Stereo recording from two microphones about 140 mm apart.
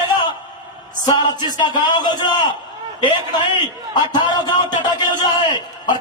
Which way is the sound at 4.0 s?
30° left (ahead or behind).